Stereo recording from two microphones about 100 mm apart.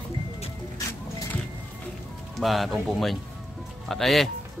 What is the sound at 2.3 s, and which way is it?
Speech, centre (ahead or behind).